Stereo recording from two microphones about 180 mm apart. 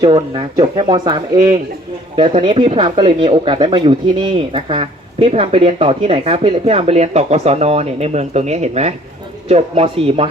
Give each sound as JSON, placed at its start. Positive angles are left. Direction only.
{"t": 0.0, "sound": "speech", "side_deg": -25}